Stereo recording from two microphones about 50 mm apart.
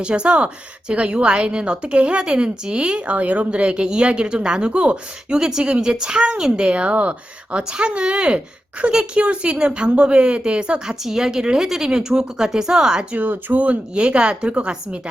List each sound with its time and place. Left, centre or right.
0.0 s a woman's voice: right
13.1 s speech: right
13.6 s a woman's voice: right